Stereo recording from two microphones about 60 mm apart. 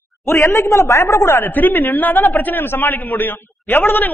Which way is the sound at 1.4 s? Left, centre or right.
Left.